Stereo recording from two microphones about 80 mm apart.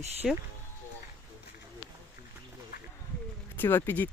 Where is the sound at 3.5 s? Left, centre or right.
Left.